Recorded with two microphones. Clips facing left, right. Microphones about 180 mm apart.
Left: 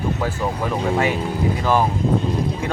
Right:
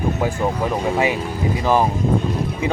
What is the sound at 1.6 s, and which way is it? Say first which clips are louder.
Speech: right 2 dB; 15° right (ahead or behind).